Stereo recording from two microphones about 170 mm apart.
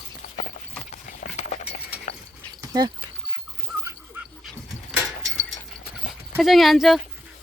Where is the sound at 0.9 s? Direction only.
45° left (ahead or behind).